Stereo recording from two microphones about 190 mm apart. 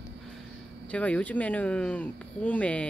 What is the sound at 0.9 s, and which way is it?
Speech, 5° left (ahead or behind).